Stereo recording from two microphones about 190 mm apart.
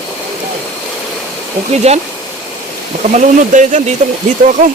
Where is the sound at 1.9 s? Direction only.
35° right (ahead or behind).